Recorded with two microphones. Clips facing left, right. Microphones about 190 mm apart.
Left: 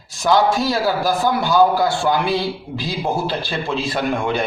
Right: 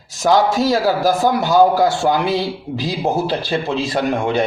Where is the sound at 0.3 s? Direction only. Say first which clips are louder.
Right 2 dB; 40° right (ahead or behind).